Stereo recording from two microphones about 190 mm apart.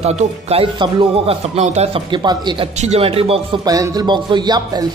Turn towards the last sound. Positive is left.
turn(degrees=-20)  # may be behind; listen again after turning